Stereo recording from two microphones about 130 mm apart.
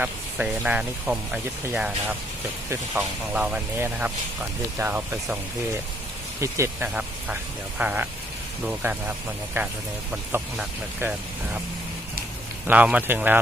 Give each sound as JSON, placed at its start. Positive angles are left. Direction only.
{"t": 0.0, "sound": "speech", "side_deg": -10}
{"t": 6.4, "sound": "speech", "side_deg": -25}
{"t": 6.8, "sound": "speech", "side_deg": -10}
{"t": 12.6, "sound": "speech", "side_deg": -10}